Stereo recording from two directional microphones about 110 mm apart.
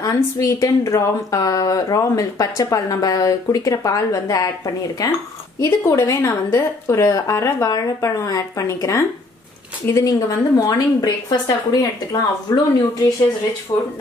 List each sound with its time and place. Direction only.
0.0 s a woman's voice: 30° left (ahead or behind)
13.7 s a woman's voice: 40° left (ahead or behind)